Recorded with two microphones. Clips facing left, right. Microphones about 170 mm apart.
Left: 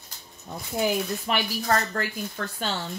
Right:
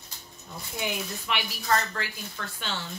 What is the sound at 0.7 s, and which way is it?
Speech, 45° left (ahead or behind).